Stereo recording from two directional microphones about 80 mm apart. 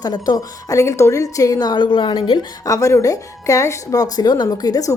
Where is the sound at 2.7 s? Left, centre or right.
Left.